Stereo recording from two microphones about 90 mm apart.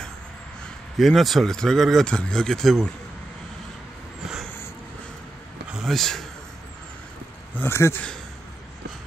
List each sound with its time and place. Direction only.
0.9 s speech: centre (ahead or behind)
5.7 s a man's voice: centre (ahead or behind)
7.5 s speech: 30° left (ahead or behind)